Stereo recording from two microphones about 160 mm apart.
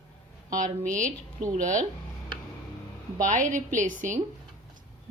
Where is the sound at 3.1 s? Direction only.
55° right (ahead or behind).